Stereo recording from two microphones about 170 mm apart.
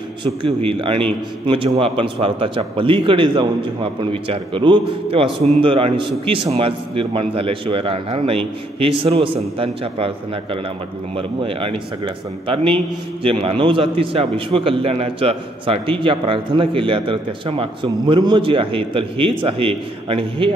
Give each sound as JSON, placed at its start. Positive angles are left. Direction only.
{"t": 0.2, "sound": "a man's voice", "side_deg": -30}
{"t": 13.2, "sound": "a man's voice", "side_deg": -30}